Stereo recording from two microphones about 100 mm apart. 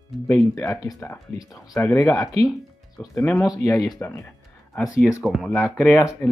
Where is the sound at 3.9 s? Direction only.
25° left (ahead or behind).